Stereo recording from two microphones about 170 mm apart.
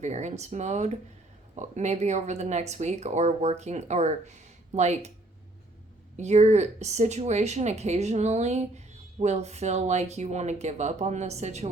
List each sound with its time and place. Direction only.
0.0 s speech: 45° right (ahead or behind)
6.1 s speech: 40° right (ahead or behind)